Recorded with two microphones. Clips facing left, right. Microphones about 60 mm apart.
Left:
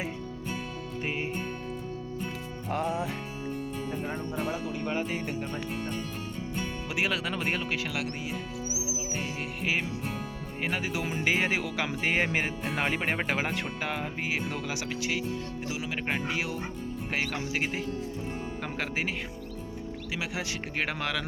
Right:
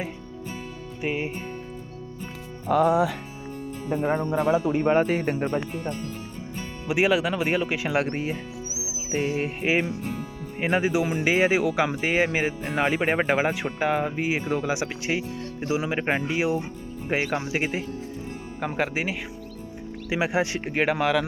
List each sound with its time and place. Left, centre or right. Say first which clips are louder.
1.0 s speech: right 6 dB; centre
3.9 s speech: right 13 dB; right
6.8 s speech: right 10 dB; centre
8.1 s speech: right 7 dB; right
9.0 s speech: right 9 dB; right
11.0 s speech: right 6 dB; centre
20.1 s speech: right 11 dB; right
20.8 s speech: right 11 dB; centre